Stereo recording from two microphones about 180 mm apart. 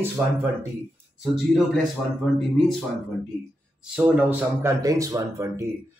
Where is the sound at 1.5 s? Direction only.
Centre (ahead or behind).